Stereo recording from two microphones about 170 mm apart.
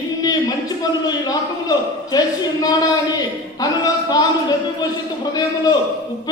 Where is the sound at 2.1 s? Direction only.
20° left (ahead or behind).